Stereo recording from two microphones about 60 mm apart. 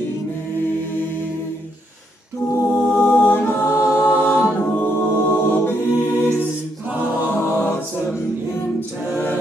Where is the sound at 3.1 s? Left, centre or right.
Left.